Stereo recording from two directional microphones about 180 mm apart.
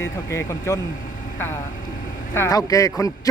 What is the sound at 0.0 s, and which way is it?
Speech, 15° left (ahead or behind).